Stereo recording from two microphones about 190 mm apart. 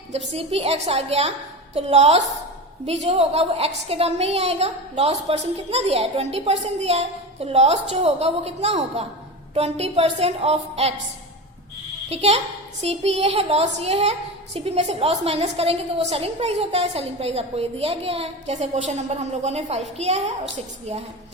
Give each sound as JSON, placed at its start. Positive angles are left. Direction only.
{"t": 0.3, "sound": "a woman's voice", "side_deg": -30}
{"t": 12.0, "sound": "a woman's voice", "side_deg": -35}